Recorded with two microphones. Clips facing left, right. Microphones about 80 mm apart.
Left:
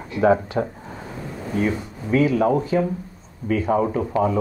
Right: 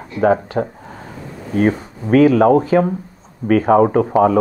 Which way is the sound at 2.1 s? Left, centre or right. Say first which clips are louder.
Right 8 dB; right.